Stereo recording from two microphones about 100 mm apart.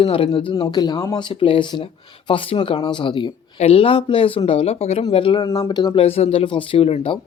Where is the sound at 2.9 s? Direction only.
50° left (ahead or behind).